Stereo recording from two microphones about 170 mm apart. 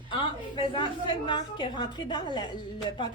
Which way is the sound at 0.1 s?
30° left (ahead or behind).